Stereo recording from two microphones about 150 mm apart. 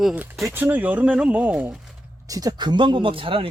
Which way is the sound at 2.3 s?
25° right (ahead or behind).